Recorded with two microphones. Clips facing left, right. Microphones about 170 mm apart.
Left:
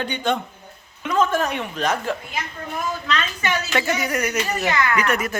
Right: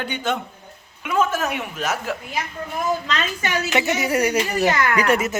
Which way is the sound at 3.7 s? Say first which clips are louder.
Right 4 dB; 20° right (ahead or behind).